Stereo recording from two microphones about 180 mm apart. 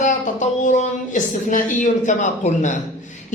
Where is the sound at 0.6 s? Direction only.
45° left (ahead or behind).